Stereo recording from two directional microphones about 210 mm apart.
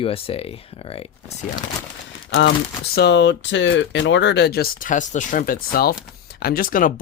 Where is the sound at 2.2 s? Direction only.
55° left (ahead or behind).